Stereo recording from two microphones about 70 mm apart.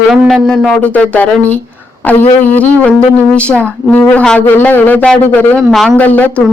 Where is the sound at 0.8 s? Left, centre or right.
Centre.